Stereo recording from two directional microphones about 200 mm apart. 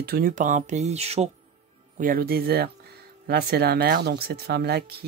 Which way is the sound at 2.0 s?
45° right (ahead or behind).